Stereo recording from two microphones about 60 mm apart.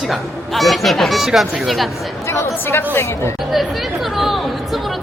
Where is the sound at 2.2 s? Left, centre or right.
Left.